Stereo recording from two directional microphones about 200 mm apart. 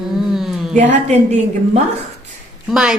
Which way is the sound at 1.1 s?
35° right (ahead or behind).